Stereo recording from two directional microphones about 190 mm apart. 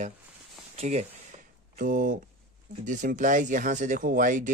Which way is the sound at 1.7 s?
45° right (ahead or behind).